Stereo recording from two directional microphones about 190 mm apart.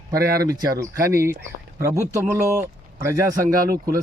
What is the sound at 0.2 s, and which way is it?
Speech, 50° right (ahead or behind).